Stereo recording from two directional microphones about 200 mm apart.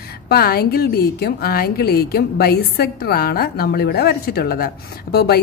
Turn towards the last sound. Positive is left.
turn(degrees=50)  # may be behind; listen again after turning